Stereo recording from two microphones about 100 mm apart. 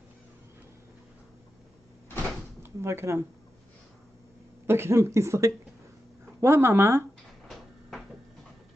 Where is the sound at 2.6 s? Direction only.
25° right (ahead or behind).